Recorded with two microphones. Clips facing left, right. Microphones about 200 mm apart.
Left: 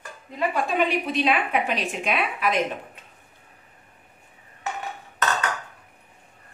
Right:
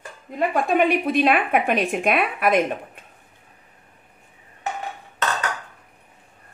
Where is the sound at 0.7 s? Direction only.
55° right (ahead or behind).